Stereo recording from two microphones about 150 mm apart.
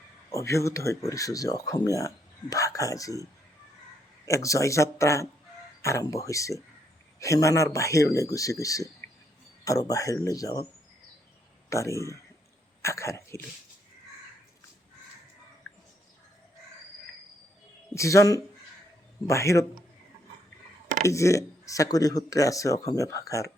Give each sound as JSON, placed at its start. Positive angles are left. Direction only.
{"t": 0.3, "sound": "speech", "side_deg": 20}
{"t": 4.3, "sound": "speech", "side_deg": 20}
{"t": 11.7, "sound": "speech", "side_deg": 20}
{"t": 17.9, "sound": "speech", "side_deg": 20}
{"t": 21.0, "sound": "speech", "side_deg": 20}